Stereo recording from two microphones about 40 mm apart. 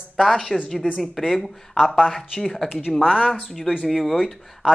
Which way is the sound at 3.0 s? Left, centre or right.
Centre.